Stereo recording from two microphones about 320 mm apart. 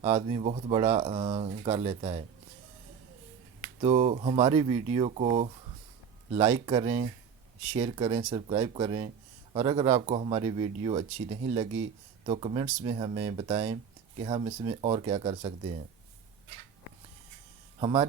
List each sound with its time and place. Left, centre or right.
0.0 s speech: centre
3.6 s speech: centre
17.7 s speech: centre